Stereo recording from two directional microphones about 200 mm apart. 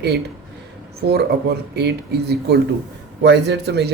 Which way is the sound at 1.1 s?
55° right (ahead or behind).